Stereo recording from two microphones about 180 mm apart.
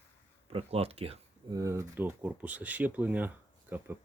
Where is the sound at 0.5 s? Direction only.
35° right (ahead or behind).